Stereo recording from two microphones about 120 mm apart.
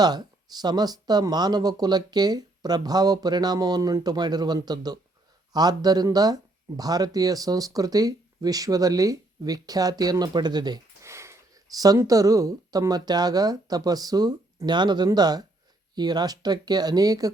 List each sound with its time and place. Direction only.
0.0 s speech: 35° right (ahead or behind)
11.0 s speech: 25° right (ahead or behind)